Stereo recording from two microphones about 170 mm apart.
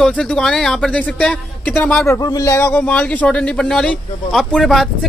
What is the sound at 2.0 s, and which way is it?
A man's voice, 20° left (ahead or behind).